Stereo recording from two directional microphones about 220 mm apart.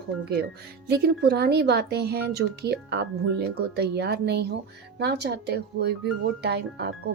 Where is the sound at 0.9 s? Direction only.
45° right (ahead or behind).